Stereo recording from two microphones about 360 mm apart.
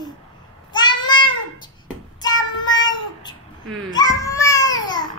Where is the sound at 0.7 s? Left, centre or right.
Centre.